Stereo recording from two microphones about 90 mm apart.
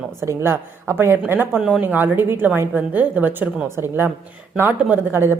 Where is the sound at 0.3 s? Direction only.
30° right (ahead or behind).